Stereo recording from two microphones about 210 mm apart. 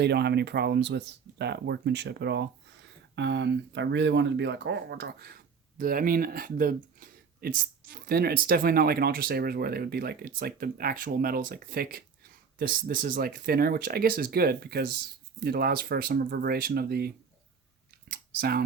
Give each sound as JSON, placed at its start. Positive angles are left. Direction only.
{"t": 0.0, "sound": "speech", "side_deg": -50}
{"t": 18.3, "sound": "speech", "side_deg": -50}